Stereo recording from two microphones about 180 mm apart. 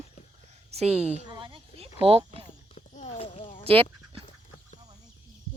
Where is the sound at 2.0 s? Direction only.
30° right (ahead or behind).